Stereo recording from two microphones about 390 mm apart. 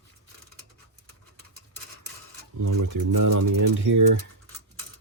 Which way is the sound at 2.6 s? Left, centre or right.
Right.